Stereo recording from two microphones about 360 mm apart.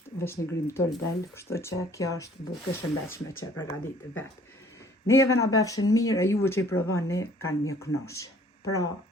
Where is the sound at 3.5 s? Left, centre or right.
Centre.